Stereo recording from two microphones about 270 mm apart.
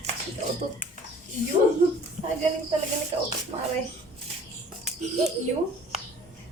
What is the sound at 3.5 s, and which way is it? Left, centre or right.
Speech, right.